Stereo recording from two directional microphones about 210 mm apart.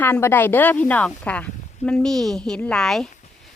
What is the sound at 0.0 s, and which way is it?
Speech, 10° left (ahead or behind).